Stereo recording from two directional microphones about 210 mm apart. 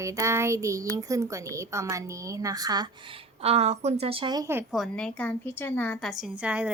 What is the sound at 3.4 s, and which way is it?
A woman's voice, 30° right (ahead or behind).